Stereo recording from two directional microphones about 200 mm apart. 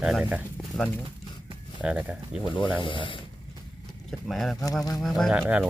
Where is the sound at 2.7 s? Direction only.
25° left (ahead or behind).